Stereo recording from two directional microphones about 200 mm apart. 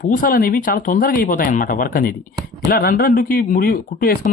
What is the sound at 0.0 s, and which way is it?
Speech, 45° left (ahead or behind).